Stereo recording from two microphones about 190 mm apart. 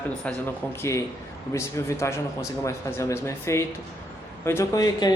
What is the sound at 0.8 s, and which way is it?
Speech, 15° left (ahead or behind).